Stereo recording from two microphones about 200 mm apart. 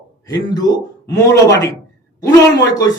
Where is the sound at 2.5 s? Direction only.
20° left (ahead or behind).